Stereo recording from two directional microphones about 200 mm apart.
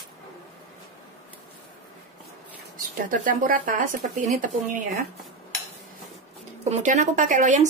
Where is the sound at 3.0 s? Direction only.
40° right (ahead or behind).